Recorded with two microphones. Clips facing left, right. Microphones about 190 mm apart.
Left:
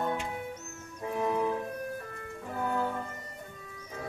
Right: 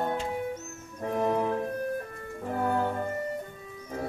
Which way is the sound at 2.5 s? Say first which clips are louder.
Right 4 dB; 55° right (ahead or behind).